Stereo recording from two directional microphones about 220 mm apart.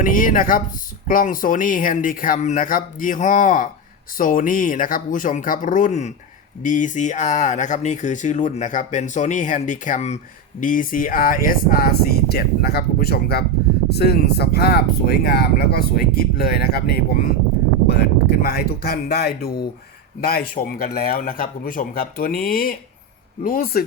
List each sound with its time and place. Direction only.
0.0 s speech: 40° left (ahead or behind)